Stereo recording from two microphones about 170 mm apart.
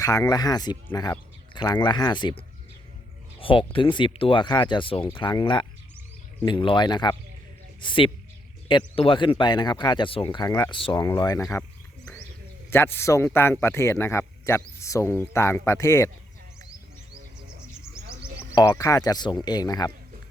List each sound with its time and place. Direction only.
0.0 s speech: 20° left (ahead or behind)
3.4 s speech: 30° left (ahead or behind)
12.7 s speech: 15° left (ahead or behind)
18.5 s speech: 20° left (ahead or behind)